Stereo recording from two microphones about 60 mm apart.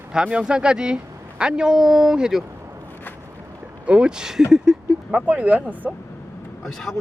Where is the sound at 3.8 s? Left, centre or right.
Centre.